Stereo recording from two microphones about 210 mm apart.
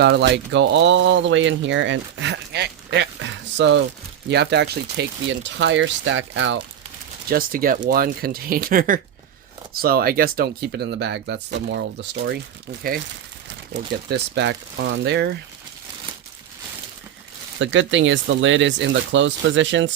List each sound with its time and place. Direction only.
0.0 s speech: 55° right (ahead or behind)
7.3 s speech: 45° right (ahead or behind)
13.7 s speech: 55° right (ahead or behind)
17.6 s speech: 60° right (ahead or behind)